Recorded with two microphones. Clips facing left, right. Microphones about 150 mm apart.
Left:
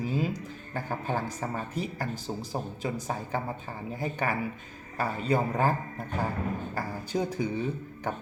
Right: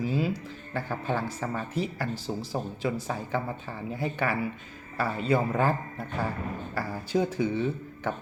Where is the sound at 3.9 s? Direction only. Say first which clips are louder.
Right 1 dB; 40° left (ahead or behind).